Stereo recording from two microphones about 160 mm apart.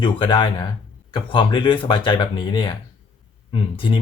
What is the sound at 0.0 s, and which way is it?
Speech, 30° left (ahead or behind).